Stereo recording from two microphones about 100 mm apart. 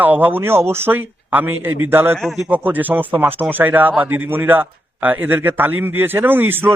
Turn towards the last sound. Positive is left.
turn(degrees=-20)  # may be behind; listen again after turning